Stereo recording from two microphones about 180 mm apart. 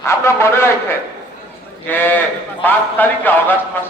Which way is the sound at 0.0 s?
15° left (ahead or behind).